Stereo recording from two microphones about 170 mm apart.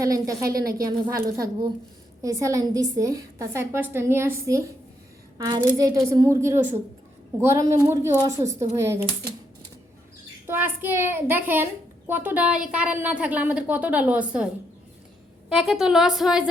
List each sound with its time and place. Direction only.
0.0 s a woman's voice: 20° right (ahead or behind)
0.5 s speech: 60° right (ahead or behind)
0.9 s a woman's voice: 20° right (ahead or behind)
10.4 s a child's voice: 10° right (ahead or behind)